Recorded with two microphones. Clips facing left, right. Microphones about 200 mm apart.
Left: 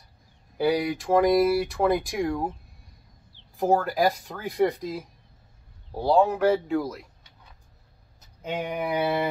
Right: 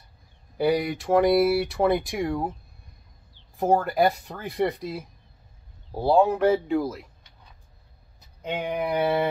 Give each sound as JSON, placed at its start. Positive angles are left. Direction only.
{"t": 0.6, "sound": "speech", "side_deg": 0}
{"t": 3.5, "sound": "speech", "side_deg": 0}
{"t": 8.4, "sound": "speech", "side_deg": 5}